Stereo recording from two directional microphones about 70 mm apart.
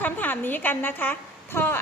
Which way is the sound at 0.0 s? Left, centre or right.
Left.